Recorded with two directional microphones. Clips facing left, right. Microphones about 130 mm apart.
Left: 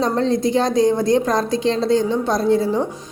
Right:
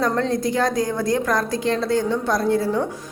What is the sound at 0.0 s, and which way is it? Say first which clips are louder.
A woman's voice: left 3 dB; 25° left (ahead or behind).